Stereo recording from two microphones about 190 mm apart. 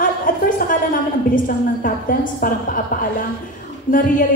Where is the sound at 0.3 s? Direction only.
45° left (ahead or behind).